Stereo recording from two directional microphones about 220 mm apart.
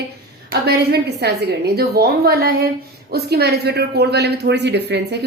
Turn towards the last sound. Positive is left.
turn(degrees=-50)  # may be behind; listen again after turning